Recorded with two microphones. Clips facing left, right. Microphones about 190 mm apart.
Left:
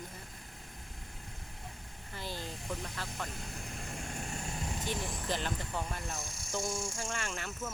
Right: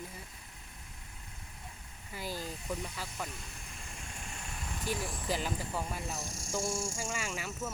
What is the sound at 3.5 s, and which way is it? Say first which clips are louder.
Vehicle: left 7 dB; 50° left (ahead or behind).